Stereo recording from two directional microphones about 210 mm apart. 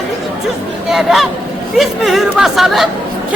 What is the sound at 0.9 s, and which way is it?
A man's voice, centre (ahead or behind).